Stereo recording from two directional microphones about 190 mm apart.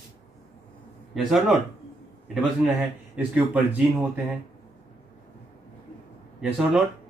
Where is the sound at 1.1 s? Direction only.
Centre (ahead or behind).